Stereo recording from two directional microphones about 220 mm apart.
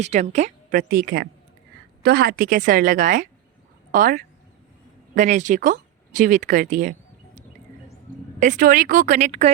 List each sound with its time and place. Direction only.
0.0 s speech: 30° right (ahead or behind)
8.4 s speech: 35° right (ahead or behind)